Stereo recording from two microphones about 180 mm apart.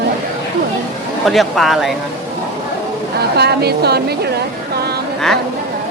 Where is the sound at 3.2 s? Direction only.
65° right (ahead or behind).